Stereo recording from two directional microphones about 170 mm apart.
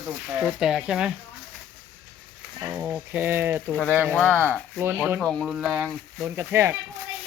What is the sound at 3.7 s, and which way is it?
Speech, 5° left (ahead or behind).